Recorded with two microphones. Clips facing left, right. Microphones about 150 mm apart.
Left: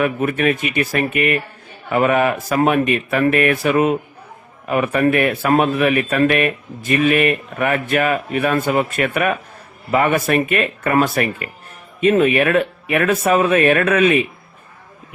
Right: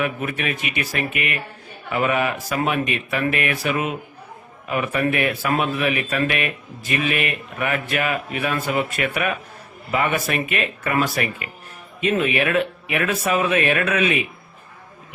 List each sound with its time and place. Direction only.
0.0 s speech: 45° left (ahead or behind)